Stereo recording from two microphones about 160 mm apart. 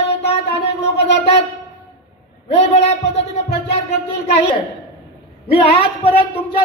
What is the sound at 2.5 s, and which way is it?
Speech, 40° left (ahead or behind).